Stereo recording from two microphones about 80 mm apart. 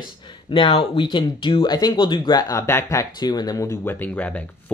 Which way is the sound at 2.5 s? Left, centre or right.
Left.